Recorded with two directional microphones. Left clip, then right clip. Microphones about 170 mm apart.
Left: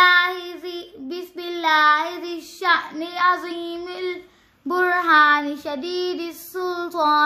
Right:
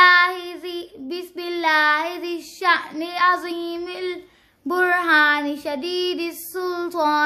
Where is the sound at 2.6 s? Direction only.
30° right (ahead or behind).